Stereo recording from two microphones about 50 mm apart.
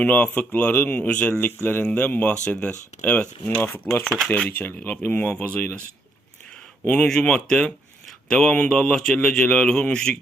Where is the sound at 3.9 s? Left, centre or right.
Left; by 10.1 s centre.